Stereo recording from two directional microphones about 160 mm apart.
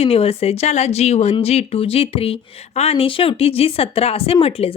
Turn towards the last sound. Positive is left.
turn(degrees=40)  # may be behind; listen again after turning